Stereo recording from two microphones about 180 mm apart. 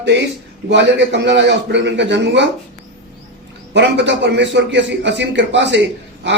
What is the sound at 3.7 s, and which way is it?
A man's voice, 80° right.